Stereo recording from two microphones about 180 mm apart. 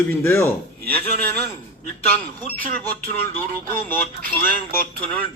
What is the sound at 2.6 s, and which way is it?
Speech, 50° right (ahead or behind).